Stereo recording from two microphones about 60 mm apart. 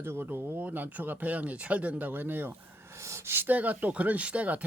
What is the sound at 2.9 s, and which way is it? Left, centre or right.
Speech, right.